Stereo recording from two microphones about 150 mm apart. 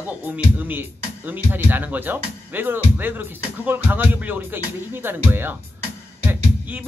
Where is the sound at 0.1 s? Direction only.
10° right (ahead or behind).